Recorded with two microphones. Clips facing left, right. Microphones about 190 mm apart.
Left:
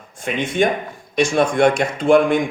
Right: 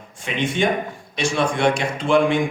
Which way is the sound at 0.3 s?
50° left (ahead or behind).